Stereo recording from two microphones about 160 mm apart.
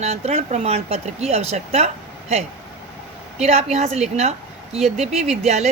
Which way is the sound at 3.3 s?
45° right (ahead or behind).